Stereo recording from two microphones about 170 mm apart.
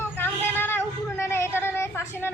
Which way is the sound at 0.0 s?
10° left (ahead or behind).